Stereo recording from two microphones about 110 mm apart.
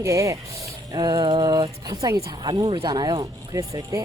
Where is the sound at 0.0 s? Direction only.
30° right (ahead or behind).